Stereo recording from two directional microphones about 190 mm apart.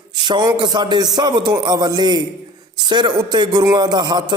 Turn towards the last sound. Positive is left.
turn(degrees=-25)  # may be behind; listen again after turning